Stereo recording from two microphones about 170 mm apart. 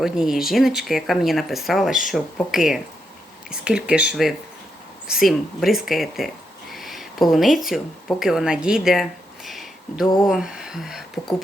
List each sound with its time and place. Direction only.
0.0 s speech: centre (ahead or behind)